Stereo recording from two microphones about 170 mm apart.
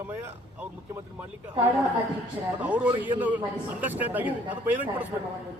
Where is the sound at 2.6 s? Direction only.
10° right (ahead or behind).